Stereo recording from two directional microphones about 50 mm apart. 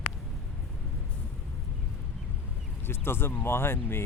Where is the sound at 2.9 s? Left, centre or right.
Left.